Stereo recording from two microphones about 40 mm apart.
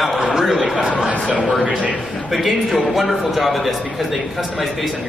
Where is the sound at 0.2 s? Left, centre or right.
Centre.